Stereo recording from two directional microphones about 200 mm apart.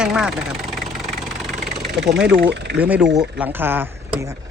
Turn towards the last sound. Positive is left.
turn(degrees=-10)  # may be behind; listen again after turning